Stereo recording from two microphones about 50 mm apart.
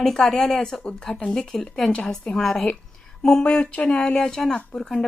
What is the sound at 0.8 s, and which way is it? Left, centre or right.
Speech, centre.